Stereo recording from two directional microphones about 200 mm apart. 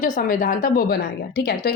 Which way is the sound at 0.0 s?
40° left (ahead or behind).